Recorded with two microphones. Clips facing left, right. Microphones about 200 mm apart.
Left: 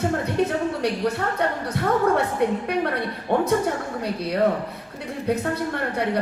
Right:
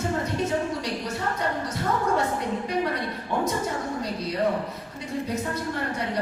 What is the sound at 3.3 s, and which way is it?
Speech, 60° left (ahead or behind).